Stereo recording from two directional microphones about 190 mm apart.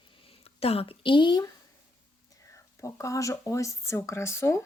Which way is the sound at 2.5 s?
15° left (ahead or behind).